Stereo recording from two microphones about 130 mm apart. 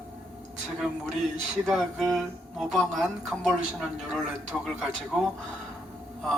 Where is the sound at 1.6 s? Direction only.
Centre (ahead or behind).